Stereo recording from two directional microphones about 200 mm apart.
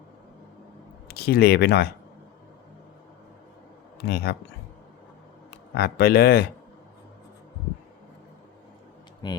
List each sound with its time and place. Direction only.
1.0 s speech: 50° left (ahead or behind)
4.1 s speech: 55° left (ahead or behind)
5.7 s speech: 50° left (ahead or behind)
9.2 s speech: 20° left (ahead or behind)